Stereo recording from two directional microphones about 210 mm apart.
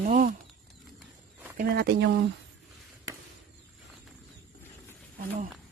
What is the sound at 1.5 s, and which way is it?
Speech, 50° right (ahead or behind).